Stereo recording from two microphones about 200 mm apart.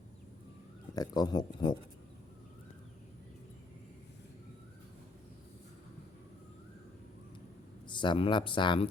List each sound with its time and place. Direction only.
0.9 s speech: 20° left (ahead or behind)
7.9 s speech: 25° left (ahead or behind)